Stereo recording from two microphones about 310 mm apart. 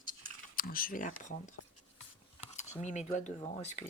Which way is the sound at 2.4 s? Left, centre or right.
Left.